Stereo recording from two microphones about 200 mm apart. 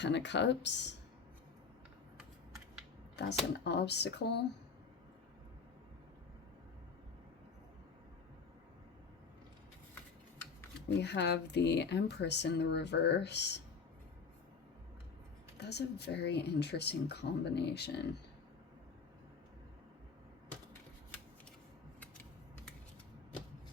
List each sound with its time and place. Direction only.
0.0 s speech: 60° left (ahead or behind)
3.2 s speech: 55° left (ahead or behind)
10.8 s speech: 60° left (ahead or behind)
15.5 s speech: 55° left (ahead or behind)